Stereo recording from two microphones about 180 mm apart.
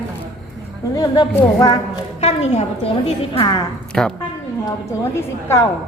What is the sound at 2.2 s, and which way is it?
Speech, 35° left (ahead or behind).